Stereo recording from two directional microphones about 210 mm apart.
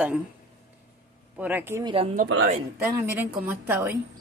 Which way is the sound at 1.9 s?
25° right (ahead or behind).